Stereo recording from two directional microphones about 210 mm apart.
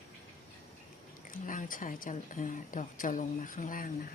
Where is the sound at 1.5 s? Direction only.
40° left (ahead or behind).